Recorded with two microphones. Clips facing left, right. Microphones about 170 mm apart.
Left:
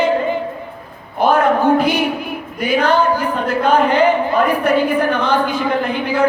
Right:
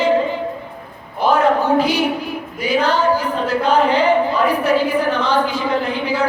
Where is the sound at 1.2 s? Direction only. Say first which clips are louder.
Left 2 dB; 55° left (ahead or behind).